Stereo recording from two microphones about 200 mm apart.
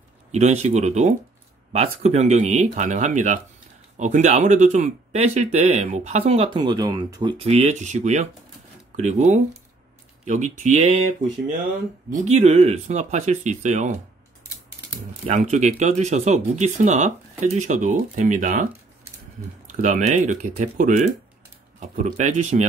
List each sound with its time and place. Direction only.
0.3 s speech: 35° right (ahead or behind)
12.1 s speech: 35° right (ahead or behind)
15.2 s speech: 35° right (ahead or behind)
19.7 s speech: 40° right (ahead or behind)